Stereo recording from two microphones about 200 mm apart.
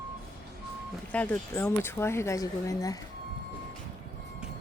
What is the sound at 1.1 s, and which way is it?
Speech, 10° left (ahead or behind).